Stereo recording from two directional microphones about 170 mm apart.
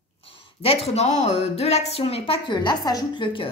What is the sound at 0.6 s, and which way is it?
A woman's voice, 35° left (ahead or behind).